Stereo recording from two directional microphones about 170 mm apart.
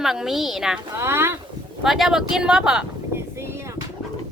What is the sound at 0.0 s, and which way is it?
Speech, centre (ahead or behind).